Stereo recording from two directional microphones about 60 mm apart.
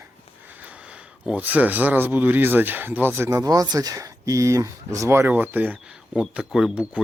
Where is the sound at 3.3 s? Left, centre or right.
Right.